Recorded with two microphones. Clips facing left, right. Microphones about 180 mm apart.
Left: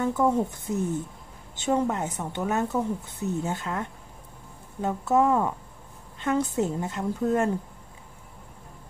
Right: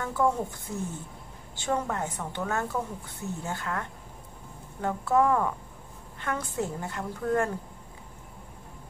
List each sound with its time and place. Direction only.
0.0 s a woman's voice: 20° left (ahead or behind)